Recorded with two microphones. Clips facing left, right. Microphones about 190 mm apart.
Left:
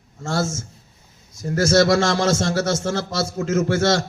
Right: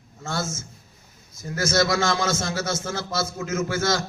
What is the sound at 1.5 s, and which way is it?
Speech, 40° left (ahead or behind).